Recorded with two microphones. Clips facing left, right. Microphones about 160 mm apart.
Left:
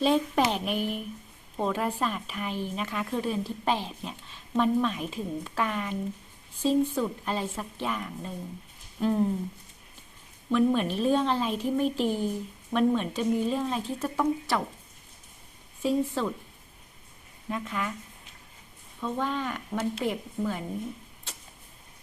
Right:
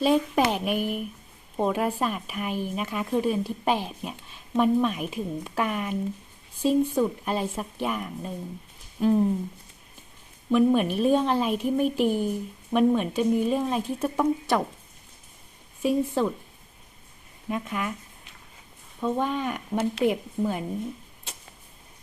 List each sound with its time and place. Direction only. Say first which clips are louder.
0.0 s speech: right 2 dB; 5° right (ahead or behind)
9.0 s a sound: right 4 dB; 15° right (ahead or behind)
10.5 s speech: right 3 dB; 15° right (ahead or behind)
15.8 s speech: right 3 dB; 15° right (ahead or behind)
17.5 s speech: right 2 dB; 15° right (ahead or behind)
19.0 s speech: right 4 dB; 15° right (ahead or behind)